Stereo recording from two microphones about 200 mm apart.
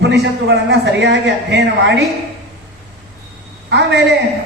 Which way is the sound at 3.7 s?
60° right (ahead or behind).